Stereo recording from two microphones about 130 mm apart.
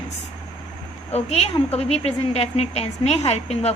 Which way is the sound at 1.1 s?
55° left (ahead or behind).